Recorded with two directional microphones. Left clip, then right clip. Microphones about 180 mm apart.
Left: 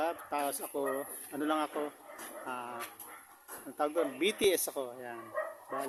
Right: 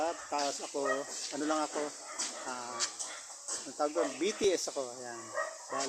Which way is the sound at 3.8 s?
25° left (ahead or behind).